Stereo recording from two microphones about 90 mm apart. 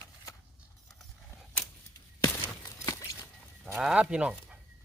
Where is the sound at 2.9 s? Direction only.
40° left (ahead or behind).